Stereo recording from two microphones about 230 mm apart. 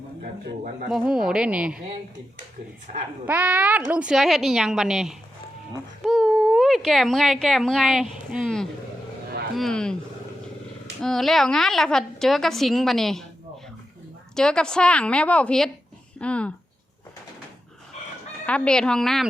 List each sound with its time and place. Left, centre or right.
0.4 s speech: right
0.9 s a woman's voice: centre
2.9 s speech: right
3.2 s a woman's voice: centre
11.0 s a woman's voice: centre
14.3 s a woman's voice: centre
18.4 s a woman's voice: centre